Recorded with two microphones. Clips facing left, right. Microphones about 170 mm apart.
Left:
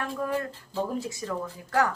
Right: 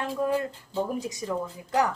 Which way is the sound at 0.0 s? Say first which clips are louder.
Right 3 dB; 25° right (ahead or behind).